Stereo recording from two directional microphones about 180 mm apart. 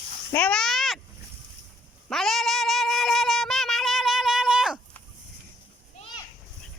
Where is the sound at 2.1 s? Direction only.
Centre (ahead or behind).